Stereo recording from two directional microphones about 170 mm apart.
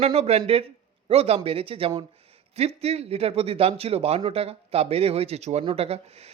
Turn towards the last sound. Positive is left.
turn(degrees=-35)  # may be behind; listen again after turning